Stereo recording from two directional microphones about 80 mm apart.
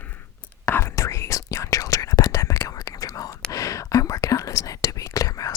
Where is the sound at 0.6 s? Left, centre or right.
Left.